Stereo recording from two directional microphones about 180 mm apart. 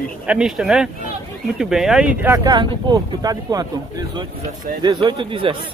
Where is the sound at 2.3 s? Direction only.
20° right (ahead or behind).